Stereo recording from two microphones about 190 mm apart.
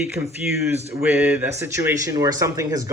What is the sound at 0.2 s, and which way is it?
Speech, 35° right (ahead or behind).